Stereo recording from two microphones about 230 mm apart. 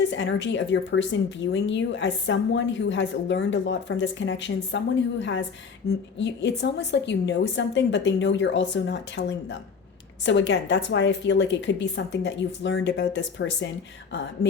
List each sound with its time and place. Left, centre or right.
0.1 s speech: left